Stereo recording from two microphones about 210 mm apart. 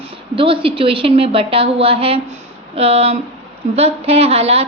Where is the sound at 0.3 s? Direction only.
25° right (ahead or behind).